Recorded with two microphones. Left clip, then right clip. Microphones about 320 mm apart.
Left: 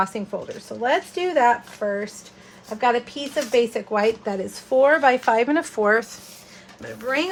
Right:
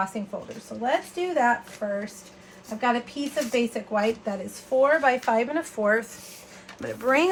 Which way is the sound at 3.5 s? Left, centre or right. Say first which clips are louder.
Left 7 dB; left.